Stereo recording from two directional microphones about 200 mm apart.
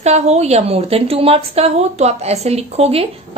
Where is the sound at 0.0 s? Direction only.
35° right (ahead or behind).